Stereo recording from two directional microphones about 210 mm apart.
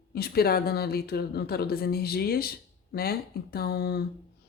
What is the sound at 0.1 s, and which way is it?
Speech, 45° left (ahead or behind).